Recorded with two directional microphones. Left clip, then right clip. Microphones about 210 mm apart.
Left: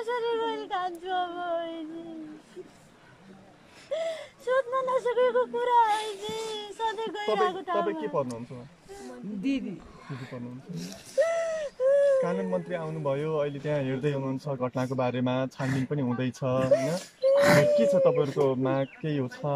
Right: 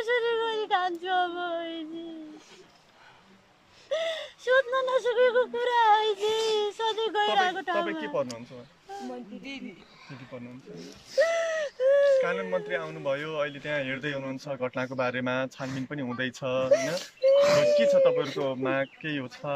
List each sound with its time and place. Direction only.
0.0 s a sound: 5° left (ahead or behind)
3.9 s speech: 5° left (ahead or behind)
7.8 s speech: 15° left (ahead or behind)
9.5 s speech: 45° left (ahead or behind)
11.1 s speech: 5° left (ahead or behind)
12.2 s a man's voice: 25° left (ahead or behind)
16.6 s speech: 5° left (ahead or behind)
17.4 s speech: 40° left (ahead or behind)
17.7 s a man's voice: 20° left (ahead or behind)